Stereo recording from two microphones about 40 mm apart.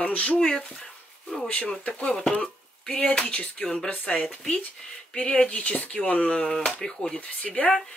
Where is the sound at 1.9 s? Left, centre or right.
Left.